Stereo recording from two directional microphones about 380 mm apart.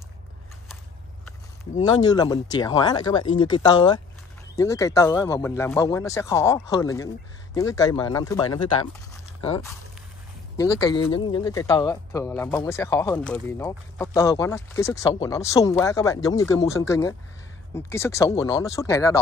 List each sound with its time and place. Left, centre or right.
2.0 s speech: centre
11.0 s speech: left
11.3 s speech: centre